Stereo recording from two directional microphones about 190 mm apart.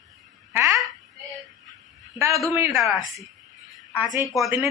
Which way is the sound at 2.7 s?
Centre (ahead or behind).